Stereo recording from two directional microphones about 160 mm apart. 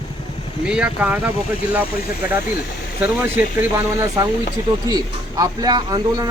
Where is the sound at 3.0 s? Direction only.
15° right (ahead or behind).